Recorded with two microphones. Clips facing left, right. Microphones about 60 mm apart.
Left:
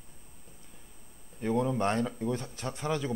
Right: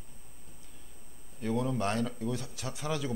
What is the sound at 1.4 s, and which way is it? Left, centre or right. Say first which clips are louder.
Speech: left 3 dB; centre.